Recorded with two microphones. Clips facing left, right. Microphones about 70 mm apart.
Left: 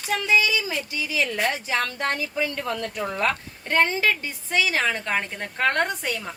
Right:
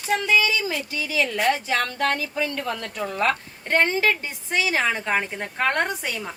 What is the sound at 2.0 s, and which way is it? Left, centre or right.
Speech, right.